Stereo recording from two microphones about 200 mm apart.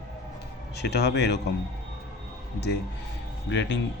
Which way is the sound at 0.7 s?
55° left (ahead or behind).